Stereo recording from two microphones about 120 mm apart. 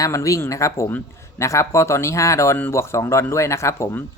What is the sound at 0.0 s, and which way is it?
Speech, 25° left (ahead or behind).